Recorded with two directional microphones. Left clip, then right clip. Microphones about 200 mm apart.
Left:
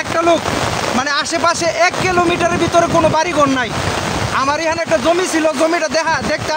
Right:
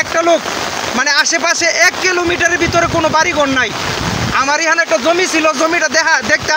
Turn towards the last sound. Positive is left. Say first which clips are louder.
# right 3 dB
turn(degrees=15)  # may be behind; listen again after turning